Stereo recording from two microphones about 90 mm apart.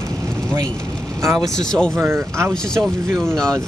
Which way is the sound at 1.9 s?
25° right (ahead or behind).